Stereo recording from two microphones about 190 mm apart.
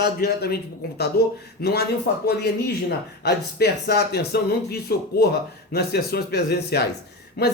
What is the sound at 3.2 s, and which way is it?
Speech, 60° left (ahead or behind).